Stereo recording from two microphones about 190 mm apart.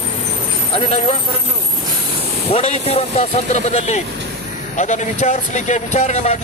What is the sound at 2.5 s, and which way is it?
Speech, 35° left (ahead or behind).